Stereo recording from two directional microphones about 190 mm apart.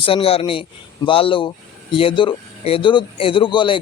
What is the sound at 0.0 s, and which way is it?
Speech, 30° left (ahead or behind).